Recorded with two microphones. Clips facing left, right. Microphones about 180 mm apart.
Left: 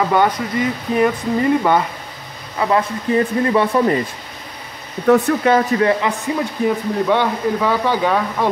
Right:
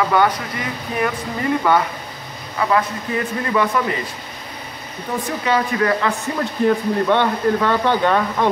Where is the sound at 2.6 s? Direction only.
30° left (ahead or behind).